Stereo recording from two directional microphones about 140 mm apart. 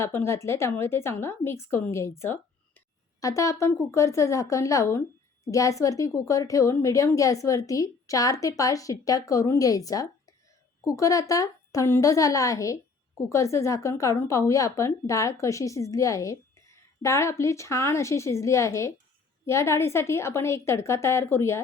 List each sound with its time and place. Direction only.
0.0 s a woman's voice: 20° left (ahead or behind)